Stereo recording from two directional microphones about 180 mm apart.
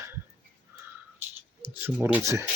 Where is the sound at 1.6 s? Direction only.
10° right (ahead or behind).